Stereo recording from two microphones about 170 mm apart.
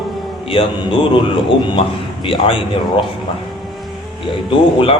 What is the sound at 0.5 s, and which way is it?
Mantra, 30° left (ahead or behind).